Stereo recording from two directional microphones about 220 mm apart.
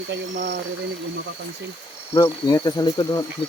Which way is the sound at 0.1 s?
40° right (ahead or behind).